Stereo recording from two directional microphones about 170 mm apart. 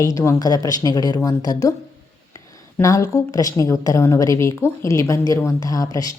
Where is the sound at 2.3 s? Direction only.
20° left (ahead or behind).